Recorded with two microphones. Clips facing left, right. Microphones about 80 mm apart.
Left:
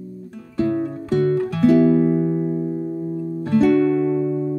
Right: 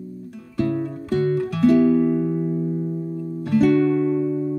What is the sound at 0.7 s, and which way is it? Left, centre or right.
Music, left.